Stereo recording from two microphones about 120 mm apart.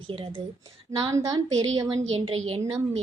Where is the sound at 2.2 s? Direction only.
55° right (ahead or behind).